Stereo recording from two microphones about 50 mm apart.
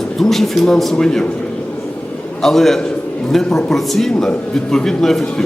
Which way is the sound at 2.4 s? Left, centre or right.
Centre.